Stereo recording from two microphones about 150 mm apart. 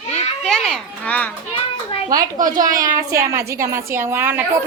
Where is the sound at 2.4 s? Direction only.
65° right (ahead or behind).